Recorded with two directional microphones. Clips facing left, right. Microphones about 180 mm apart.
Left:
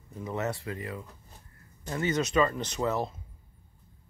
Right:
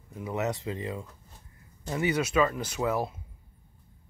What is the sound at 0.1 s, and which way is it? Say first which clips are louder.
Speech: right 2 dB; 10° right (ahead or behind).